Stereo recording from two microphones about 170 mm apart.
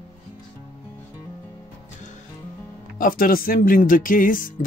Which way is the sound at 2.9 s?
55° left (ahead or behind).